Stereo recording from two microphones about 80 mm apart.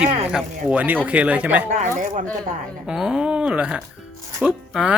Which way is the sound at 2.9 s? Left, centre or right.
Centre.